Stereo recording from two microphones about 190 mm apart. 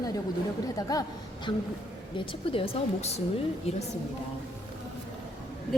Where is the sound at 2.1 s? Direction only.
30° left (ahead or behind).